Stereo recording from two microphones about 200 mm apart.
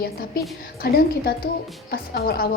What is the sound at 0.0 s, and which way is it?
A woman's voice, 50° left (ahead or behind).